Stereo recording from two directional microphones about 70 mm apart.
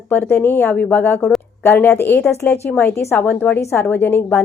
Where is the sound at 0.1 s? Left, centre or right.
Left.